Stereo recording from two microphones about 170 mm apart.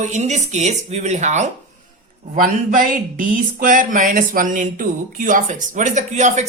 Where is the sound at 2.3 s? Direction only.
55° right (ahead or behind).